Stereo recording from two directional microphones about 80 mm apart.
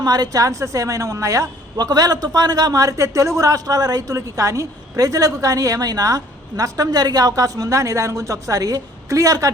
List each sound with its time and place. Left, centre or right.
0.0 s a man's voice: right
1.7 s a man's voice: right